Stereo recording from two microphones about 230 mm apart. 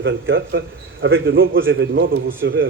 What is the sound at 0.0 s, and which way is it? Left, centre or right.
A man's voice, right.